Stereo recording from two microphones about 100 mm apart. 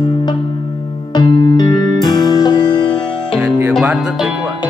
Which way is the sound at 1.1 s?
40° left (ahead or behind).